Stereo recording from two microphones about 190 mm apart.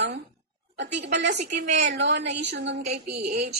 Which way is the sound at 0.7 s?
65° right (ahead or behind).